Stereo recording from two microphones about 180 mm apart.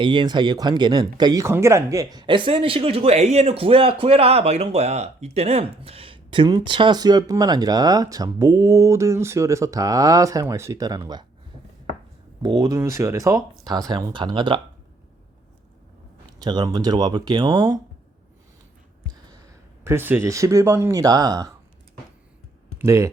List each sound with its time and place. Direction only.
0.0 s speech: 25° right (ahead or behind)
12.4 s speech: 20° right (ahead or behind)
16.4 s speech: 25° right (ahead or behind)
19.8 s speech: 15° right (ahead or behind)
22.8 s speech: 15° right (ahead or behind)